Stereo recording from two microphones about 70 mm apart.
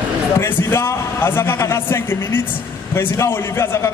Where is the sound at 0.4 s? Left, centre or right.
Left.